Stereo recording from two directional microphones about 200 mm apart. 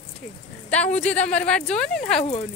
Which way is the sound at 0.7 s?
5° left (ahead or behind).